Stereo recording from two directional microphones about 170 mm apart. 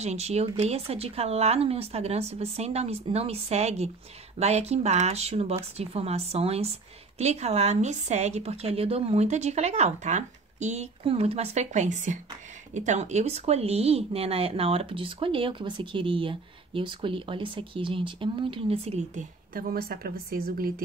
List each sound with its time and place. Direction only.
0.0 s speech: 40° right (ahead or behind); by 20.8 s 60° right (ahead or behind)